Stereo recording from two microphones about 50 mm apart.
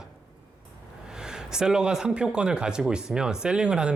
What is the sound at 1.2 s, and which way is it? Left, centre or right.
Speech, centre.